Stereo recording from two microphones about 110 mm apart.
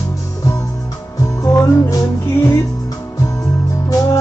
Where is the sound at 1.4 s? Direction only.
30° left (ahead or behind).